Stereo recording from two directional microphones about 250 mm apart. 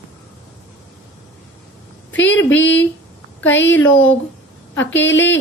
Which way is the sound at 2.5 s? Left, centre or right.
Left.